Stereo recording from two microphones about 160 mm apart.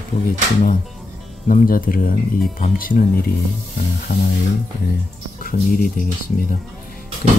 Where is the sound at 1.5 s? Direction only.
60° left (ahead or behind).